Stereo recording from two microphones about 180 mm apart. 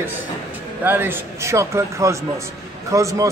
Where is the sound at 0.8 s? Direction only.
10° right (ahead or behind).